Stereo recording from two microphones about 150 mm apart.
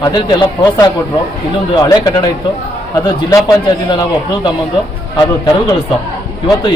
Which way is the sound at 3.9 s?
30° left (ahead or behind).